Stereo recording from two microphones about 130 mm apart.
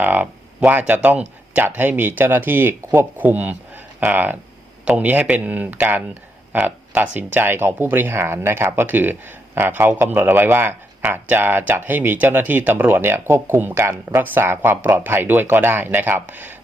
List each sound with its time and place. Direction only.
0.0 s speech: 10° right (ahead or behind)